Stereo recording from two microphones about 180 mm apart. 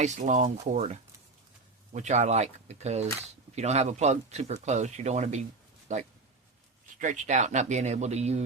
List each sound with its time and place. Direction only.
0.0 s speech: 40° right (ahead or behind)